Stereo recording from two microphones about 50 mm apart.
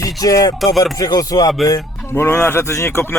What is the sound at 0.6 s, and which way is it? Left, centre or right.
Speech, centre.